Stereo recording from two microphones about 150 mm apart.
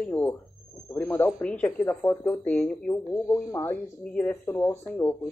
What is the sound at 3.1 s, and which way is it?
Speech, 20° left (ahead or behind).